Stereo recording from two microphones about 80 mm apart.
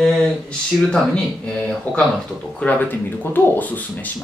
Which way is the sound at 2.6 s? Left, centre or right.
Left.